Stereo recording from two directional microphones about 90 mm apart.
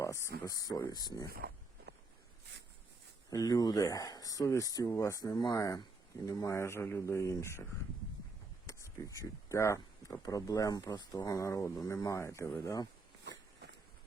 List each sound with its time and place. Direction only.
0.0 s speech: 35° left (ahead or behind)
3.2 s speech: 45° left (ahead or behind)
12.6 s speech: 40° left (ahead or behind)